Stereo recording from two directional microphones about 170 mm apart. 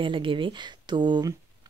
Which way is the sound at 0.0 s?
30° right (ahead or behind).